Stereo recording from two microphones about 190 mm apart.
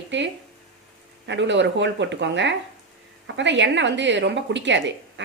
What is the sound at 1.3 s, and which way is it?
A woman's voice, 70° right (ahead or behind).